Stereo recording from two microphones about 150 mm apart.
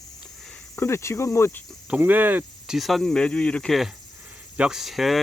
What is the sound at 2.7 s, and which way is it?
Speech, centre (ahead or behind).